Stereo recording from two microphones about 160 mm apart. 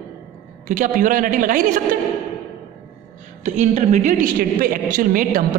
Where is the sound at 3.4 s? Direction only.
45° right (ahead or behind).